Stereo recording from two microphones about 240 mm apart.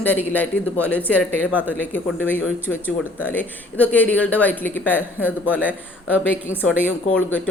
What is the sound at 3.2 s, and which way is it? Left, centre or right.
Speech, centre.